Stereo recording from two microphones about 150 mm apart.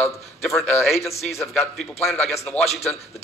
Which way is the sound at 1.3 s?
20° left (ahead or behind).